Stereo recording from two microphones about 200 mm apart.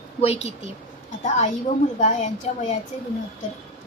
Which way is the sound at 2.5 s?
30° left (ahead or behind).